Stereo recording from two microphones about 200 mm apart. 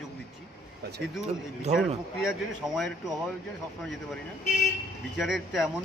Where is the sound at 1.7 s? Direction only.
35° right (ahead or behind).